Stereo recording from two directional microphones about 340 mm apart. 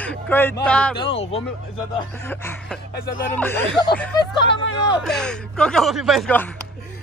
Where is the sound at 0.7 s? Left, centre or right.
Centre.